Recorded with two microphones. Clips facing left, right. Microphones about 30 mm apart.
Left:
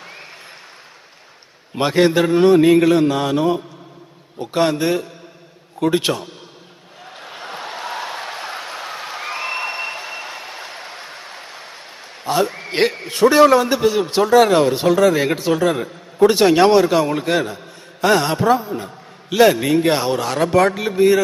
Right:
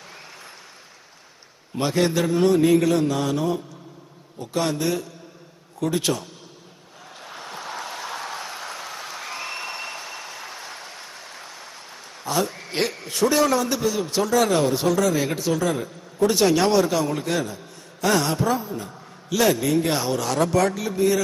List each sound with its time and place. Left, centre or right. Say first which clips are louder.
1.7 s a man's voice: left 6 dB; left
7.2 s a sound: left 5 dB; left
12.2 s a man's voice: left 6 dB; left